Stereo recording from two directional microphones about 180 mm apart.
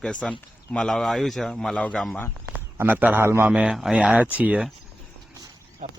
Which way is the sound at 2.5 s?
10° right (ahead or behind).